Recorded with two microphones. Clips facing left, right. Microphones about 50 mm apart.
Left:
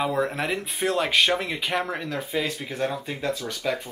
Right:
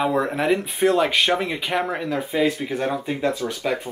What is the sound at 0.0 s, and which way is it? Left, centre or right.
Speech, centre.